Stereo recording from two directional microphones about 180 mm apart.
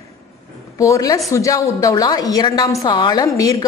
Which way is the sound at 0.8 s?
20° left (ahead or behind).